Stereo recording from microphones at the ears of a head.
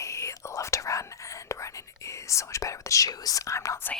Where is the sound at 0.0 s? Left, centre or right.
Left.